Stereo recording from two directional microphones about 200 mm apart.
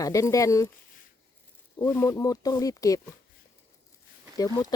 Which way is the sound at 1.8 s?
15° left (ahead or behind).